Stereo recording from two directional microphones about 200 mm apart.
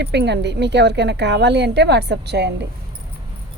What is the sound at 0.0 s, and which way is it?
A woman's voice, 55° right (ahead or behind).